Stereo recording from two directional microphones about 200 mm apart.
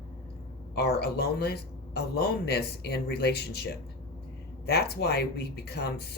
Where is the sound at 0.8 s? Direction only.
55° left (ahead or behind).